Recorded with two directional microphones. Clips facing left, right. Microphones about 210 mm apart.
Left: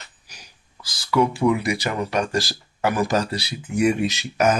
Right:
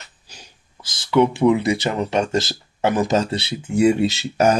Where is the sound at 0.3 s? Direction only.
25° right (ahead or behind).